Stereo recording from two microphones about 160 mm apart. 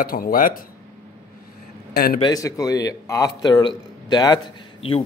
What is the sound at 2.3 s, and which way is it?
A man's voice, 20° left (ahead or behind).